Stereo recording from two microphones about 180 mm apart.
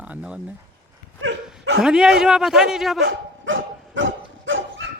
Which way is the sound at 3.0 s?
90° right.